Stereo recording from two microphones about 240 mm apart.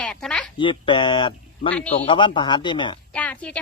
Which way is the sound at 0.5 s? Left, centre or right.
Centre.